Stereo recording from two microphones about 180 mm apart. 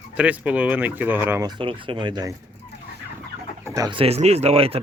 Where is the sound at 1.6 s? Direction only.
30° right (ahead or behind).